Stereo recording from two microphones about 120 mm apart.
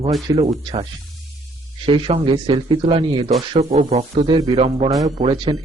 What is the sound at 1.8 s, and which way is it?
Speech, 50° right (ahead or behind).